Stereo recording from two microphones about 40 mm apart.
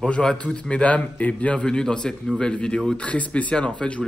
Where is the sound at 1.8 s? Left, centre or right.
Centre.